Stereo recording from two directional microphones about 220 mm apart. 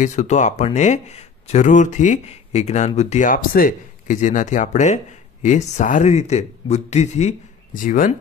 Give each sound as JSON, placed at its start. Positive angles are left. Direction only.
{"t": 0.0, "sound": "speech", "side_deg": 30}